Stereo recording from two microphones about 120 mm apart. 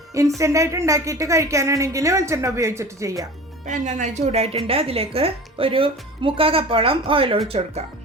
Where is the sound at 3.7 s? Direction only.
85° right; by 7.8 s 50° right (ahead or behind).